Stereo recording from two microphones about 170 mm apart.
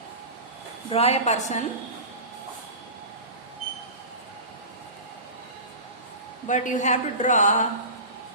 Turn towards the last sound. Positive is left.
turn(degrees=45)  # may be behind; listen again after turning